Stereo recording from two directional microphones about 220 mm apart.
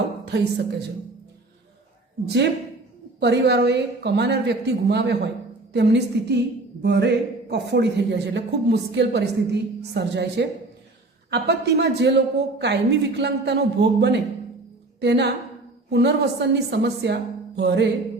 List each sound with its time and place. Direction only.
0.3 s a man's voice: 50° right (ahead or behind)
2.2 s a man's voice: 50° right (ahead or behind)